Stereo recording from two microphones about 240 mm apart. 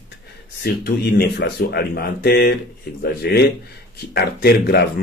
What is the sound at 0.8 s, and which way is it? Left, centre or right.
Speech, left.